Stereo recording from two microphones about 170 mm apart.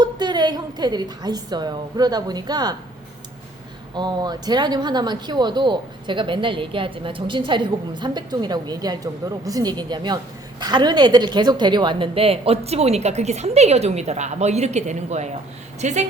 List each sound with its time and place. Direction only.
0.0 s speech: 25° right (ahead or behind)
3.9 s a woman's voice: 25° right (ahead or behind); by 16.0 s 40° right (ahead or behind)